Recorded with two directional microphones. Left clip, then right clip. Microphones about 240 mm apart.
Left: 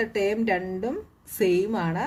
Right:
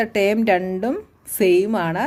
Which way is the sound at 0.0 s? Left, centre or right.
Right.